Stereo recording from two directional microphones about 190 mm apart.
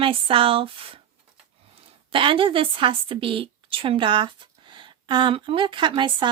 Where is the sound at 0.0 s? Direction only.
30° right (ahead or behind).